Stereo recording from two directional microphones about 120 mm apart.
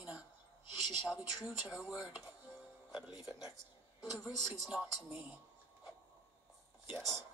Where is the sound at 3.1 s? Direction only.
30° left (ahead or behind).